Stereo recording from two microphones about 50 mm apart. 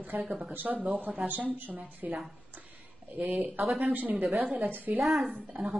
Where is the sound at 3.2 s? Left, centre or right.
Right.